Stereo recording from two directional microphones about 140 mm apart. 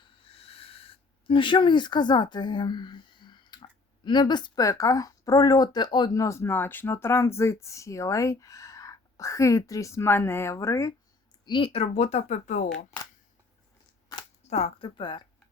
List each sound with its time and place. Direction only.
0.0 s speech: 45° left (ahead or behind); by 10.9 s 20° left (ahead or behind)
11.4 s speech: 35° left (ahead or behind); by 12.6 s 60° left (ahead or behind)
14.5 s speech: 45° left (ahead or behind)